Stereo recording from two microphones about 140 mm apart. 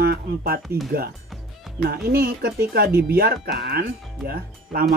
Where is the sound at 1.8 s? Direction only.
90° right.